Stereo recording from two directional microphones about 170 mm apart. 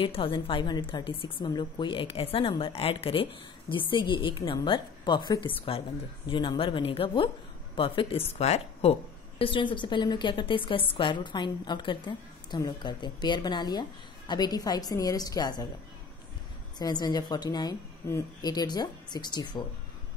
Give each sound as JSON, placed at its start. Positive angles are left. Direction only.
{"t": 0.0, "sound": "a woman's voice", "side_deg": 30}
{"t": 16.7, "sound": "a woman's voice", "side_deg": 25}